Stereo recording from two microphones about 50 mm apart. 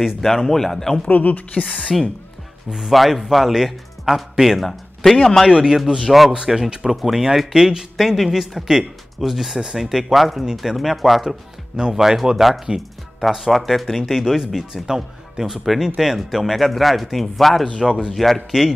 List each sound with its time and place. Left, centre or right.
0.2 s speech: centre
1.0 s a woman's voice: left
1.9 s speech: centre
5.9 s speech: centre
11.2 s speech: centre
17.6 s speech: centre
18.1 s speech: centre